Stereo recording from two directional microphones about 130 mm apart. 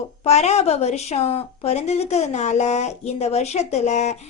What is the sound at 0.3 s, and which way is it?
A woman's voice, 55° left (ahead or behind).